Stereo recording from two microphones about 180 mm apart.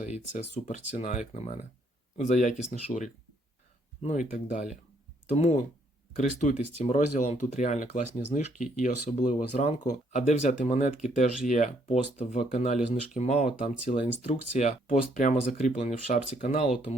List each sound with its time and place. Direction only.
0.0 s speech: 40° left (ahead or behind)
4.0 s speech: 45° left (ahead or behind)